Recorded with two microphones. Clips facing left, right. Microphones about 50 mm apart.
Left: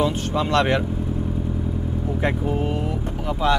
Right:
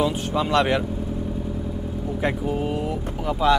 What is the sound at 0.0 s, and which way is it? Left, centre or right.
Speech, centre.